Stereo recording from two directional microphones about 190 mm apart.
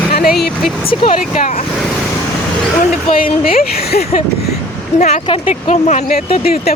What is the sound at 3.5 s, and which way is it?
Speech, 50° left (ahead or behind).